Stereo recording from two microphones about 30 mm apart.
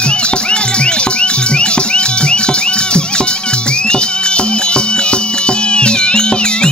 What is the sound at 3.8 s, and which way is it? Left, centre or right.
Music, left.